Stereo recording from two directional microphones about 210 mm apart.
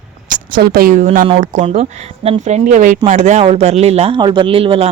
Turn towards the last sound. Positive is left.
turn(degrees=-25)  # may be behind; listen again after turning